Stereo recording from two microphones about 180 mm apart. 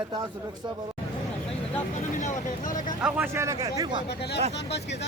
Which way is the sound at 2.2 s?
45° left (ahead or behind).